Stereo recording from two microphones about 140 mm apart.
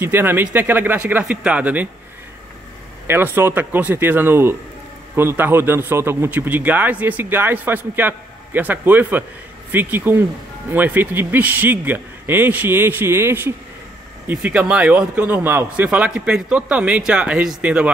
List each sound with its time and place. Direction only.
0.0 s a man's voice: 15° right (ahead or behind)
3.1 s a man's voice: 15° right (ahead or behind)